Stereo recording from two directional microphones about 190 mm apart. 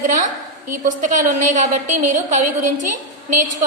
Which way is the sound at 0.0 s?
45° right (ahead or behind).